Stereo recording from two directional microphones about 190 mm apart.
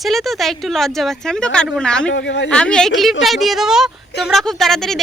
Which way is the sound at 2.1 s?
70° left (ahead or behind).